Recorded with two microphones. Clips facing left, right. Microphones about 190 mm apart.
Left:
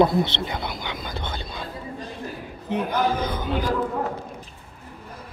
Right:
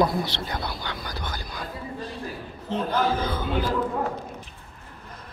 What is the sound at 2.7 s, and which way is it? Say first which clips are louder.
Speech: left 1 dB; 15° left (ahead or behind).